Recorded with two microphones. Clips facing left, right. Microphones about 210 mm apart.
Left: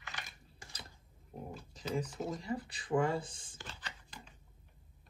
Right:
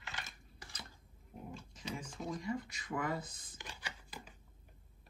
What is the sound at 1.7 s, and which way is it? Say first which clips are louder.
Speech: left 9 dB; 35° left (ahead or behind).